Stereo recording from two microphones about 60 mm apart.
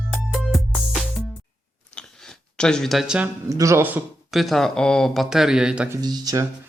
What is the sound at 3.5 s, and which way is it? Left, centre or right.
Speech, right.